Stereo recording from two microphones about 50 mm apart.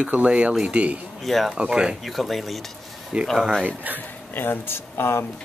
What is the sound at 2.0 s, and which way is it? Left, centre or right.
Speech, centre.